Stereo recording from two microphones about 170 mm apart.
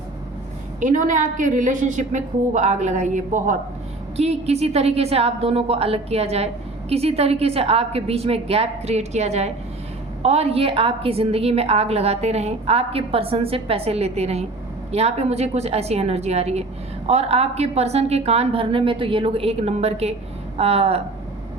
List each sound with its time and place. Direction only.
0.8 s a woman's voice: 50° right (ahead or behind)